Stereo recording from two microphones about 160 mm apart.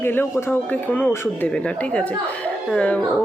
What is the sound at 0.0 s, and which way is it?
Speech, 15° left (ahead or behind).